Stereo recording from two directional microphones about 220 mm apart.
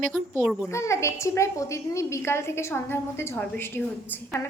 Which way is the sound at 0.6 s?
10° left (ahead or behind).